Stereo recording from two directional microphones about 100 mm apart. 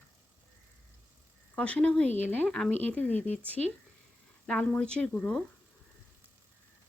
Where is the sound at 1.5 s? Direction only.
10° left (ahead or behind).